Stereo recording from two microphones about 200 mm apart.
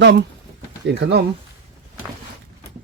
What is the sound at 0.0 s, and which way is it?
Speech, 55° right (ahead or behind).